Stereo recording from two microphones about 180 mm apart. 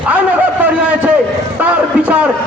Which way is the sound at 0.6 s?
10° right (ahead or behind).